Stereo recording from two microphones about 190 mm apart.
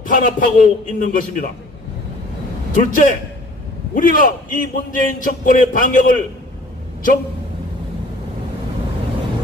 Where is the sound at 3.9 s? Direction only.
45° left (ahead or behind).